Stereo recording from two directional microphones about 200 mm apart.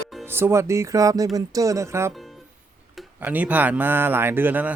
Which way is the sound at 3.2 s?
10° right (ahead or behind).